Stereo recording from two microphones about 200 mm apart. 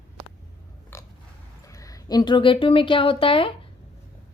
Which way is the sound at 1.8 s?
20° left (ahead or behind).